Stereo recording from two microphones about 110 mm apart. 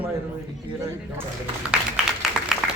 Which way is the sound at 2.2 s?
Centre (ahead or behind).